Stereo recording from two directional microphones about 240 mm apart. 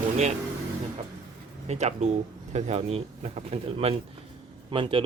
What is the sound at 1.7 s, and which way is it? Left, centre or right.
Speech, right.